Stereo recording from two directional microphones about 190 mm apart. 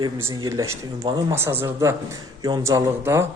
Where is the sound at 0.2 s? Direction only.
15° right (ahead or behind).